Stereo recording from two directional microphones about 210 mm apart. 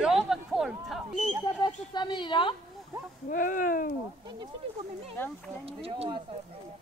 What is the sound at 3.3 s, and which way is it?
Speech, 40° left (ahead or behind).